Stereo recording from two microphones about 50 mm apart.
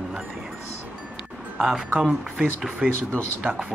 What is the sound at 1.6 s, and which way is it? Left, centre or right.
Speech, centre.